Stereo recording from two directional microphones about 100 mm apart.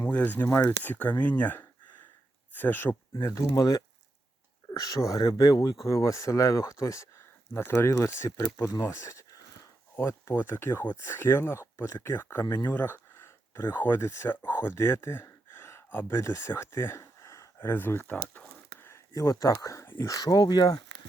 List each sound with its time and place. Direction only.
0.0 s speech: 20° left (ahead or behind)
18.9 s speech: 30° left (ahead or behind)
20.1 s speech: 40° left (ahead or behind)